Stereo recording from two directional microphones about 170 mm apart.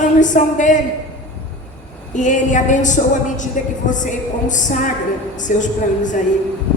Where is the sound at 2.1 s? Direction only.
45° left (ahead or behind).